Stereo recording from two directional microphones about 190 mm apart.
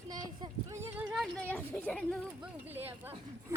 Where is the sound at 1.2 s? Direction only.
5° left (ahead or behind).